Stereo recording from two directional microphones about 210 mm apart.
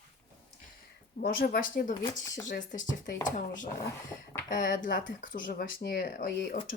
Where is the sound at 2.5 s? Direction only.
40° left (ahead or behind).